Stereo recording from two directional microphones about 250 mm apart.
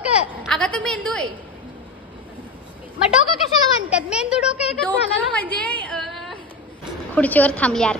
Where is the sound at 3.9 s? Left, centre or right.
Centre.